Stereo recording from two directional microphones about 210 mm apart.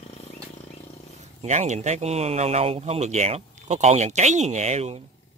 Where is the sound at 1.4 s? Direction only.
30° right (ahead or behind).